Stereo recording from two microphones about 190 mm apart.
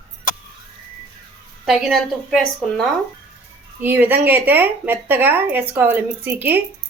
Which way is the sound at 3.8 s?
10° right (ahead or behind).